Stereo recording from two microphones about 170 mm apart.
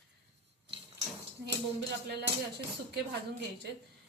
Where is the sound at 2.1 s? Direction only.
80° right.